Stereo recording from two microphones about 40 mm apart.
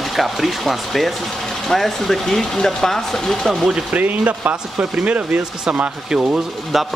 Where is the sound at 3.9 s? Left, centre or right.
Right.